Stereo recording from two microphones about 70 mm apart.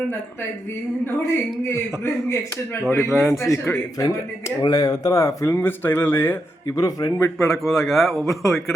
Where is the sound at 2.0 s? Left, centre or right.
Left.